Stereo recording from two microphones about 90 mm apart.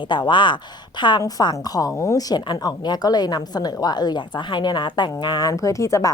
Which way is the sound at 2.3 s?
50° left (ahead or behind).